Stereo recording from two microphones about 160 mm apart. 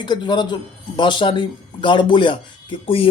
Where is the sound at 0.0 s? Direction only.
30° left (ahead or behind).